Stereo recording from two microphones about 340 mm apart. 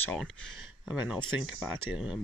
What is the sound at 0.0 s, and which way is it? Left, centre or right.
Speech, centre.